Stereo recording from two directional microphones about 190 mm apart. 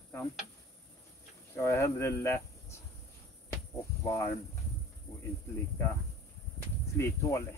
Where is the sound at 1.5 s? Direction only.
15° left (ahead or behind).